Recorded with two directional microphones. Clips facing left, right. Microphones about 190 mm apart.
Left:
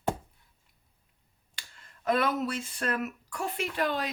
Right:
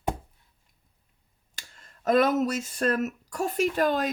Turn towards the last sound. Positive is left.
turn(degrees=-45)  # may be behind; listen again after turning